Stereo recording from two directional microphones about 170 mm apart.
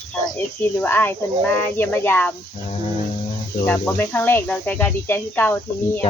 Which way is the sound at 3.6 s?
10° left (ahead or behind).